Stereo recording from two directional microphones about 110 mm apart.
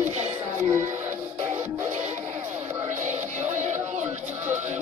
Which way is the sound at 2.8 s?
90° right.